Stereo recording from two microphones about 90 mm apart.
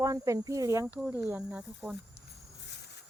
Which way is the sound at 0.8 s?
20° right (ahead or behind).